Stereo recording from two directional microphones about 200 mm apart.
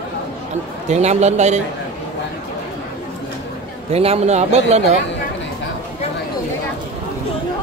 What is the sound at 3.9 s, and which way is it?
Speech, 30° right (ahead or behind).